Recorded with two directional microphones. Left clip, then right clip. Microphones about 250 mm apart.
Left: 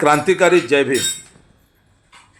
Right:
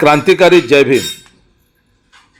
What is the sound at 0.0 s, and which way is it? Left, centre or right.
Music, right.